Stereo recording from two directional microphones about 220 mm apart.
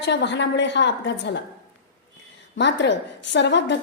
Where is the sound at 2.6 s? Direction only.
55° left (ahead or behind).